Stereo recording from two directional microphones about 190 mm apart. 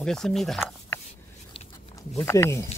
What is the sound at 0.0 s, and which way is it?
Speech, centre (ahead or behind).